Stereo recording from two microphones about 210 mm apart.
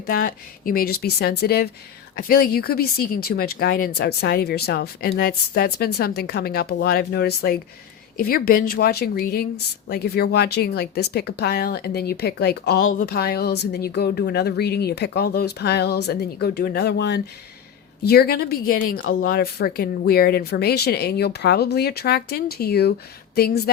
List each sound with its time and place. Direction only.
0.0 s speech: 45° left (ahead or behind)